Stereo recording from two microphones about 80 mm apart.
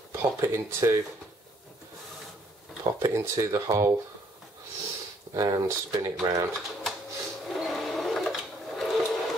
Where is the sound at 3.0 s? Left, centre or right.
Right.